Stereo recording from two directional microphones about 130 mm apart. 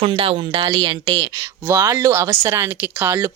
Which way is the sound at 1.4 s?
20° right (ahead or behind).